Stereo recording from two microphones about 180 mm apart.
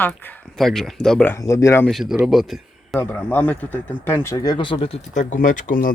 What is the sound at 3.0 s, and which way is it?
Speech, 15° left (ahead or behind).